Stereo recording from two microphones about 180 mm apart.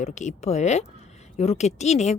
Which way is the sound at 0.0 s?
40° left (ahead or behind).